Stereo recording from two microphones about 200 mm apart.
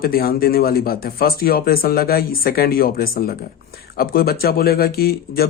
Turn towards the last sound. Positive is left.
turn(degrees=50)  # may be behind; listen again after turning